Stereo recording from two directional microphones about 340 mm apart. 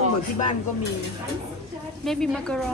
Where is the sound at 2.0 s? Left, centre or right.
Centre.